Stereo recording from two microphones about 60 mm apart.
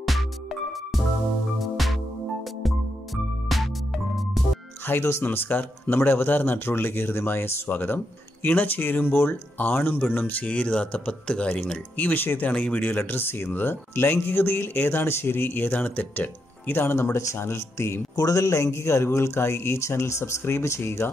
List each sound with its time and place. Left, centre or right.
0.0 s music: centre
3.4 s music: centre
4.8 s speech: left; by 11.6 s centre
12.0 s speech: left
18.1 s a man's voice: left